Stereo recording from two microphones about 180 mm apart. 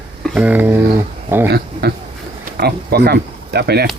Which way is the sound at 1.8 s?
65° right (ahead or behind).